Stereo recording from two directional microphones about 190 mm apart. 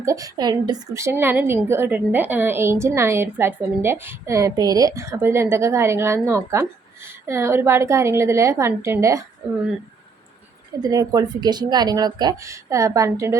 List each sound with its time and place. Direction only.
0.0 s a woman's voice: 15° right (ahead or behind)
10.8 s speech: 20° right (ahead or behind)